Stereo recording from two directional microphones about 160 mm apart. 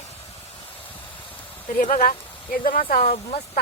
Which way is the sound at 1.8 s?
55° left (ahead or behind).